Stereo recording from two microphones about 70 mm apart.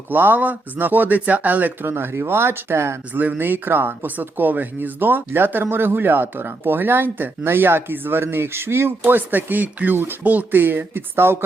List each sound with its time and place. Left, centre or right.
0.1 s speech: right
1.9 s speech: right
3.2 s speech: right